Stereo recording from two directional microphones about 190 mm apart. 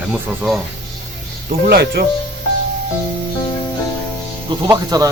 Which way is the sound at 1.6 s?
55° right (ahead or behind).